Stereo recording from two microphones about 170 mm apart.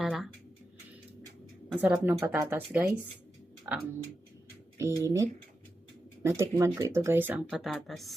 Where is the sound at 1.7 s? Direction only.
10° right (ahead or behind).